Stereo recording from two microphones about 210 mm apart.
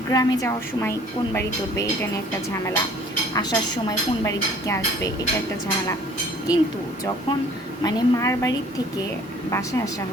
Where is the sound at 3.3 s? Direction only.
20° left (ahead or behind).